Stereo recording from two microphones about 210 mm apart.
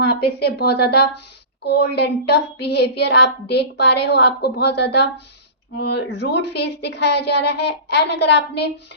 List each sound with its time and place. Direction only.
0.0 s speech: 50° left (ahead or behind)